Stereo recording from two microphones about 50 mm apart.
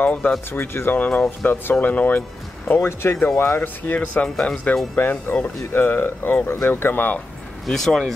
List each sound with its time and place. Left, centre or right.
0.0 s speech: left
0.5 s speech: left
0.9 s speech: left
2.8 s speech: left
3.6 s speech: left
6.5 s speech: left
7.6 s speech: centre